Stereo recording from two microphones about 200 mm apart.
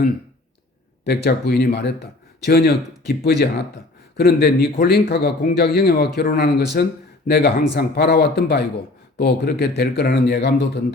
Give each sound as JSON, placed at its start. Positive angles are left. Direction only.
{"t": 1.0, "sound": "a man's voice", "side_deg": 55}